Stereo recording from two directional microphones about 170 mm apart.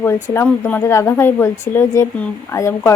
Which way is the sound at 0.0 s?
15° left (ahead or behind).